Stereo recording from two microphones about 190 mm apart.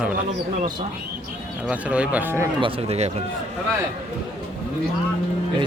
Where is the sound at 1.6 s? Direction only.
5° right (ahead or behind).